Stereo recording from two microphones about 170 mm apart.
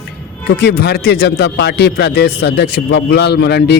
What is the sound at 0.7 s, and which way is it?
A man's voice, 85° left.